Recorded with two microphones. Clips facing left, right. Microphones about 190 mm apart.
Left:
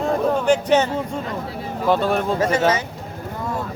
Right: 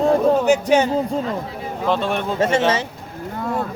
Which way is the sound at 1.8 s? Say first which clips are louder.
Left 2 dB; 5° left (ahead or behind).